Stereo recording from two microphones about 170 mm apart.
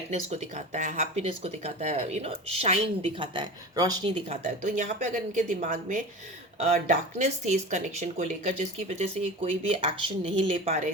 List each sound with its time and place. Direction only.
0.1 s speech: 40° right (ahead or behind)
3.2 s speech: 25° right (ahead or behind)
4.3 s speech: 45° right (ahead or behind)